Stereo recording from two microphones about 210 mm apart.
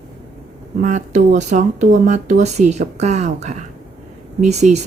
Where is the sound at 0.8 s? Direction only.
35° right (ahead or behind).